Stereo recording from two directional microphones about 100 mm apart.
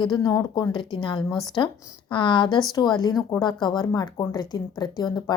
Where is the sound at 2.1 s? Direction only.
55° left (ahead or behind).